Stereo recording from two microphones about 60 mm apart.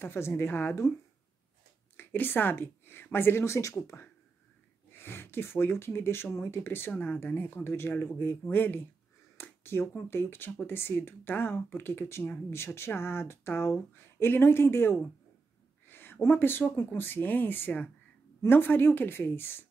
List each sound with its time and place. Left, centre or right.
0.0 s speech: left
2.0 s a woman's voice: left
4.9 s speech: left
15.9 s a sound: left
16.7 s speech: left